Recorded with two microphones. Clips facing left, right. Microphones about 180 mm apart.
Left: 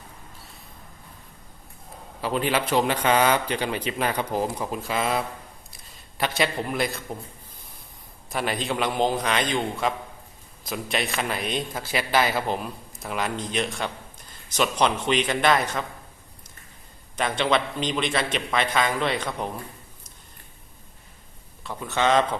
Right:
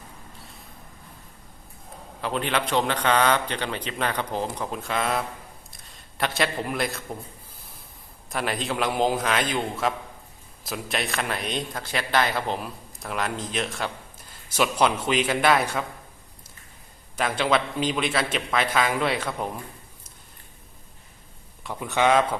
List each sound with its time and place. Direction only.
2.2 s a man's voice: 5° left (ahead or behind)
8.3 s a man's voice: centre (ahead or behind)
17.2 s a man's voice: 5° right (ahead or behind)
21.6 s a man's voice: 15° right (ahead or behind)